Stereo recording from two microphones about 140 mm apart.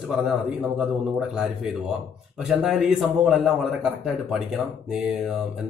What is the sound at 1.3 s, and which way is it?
Speech, 5° right (ahead or behind).